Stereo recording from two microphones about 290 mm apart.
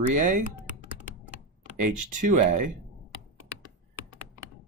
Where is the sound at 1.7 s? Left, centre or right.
Right.